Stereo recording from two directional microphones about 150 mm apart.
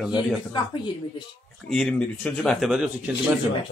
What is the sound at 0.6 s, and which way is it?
Speech, 35° left (ahead or behind).